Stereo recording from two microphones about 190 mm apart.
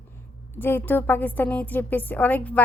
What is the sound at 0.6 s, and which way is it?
A woman's voice, 10° left (ahead or behind).